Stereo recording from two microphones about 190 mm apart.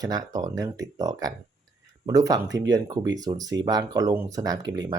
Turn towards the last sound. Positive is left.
turn(degrees=-20)  # may be behind; listen again after turning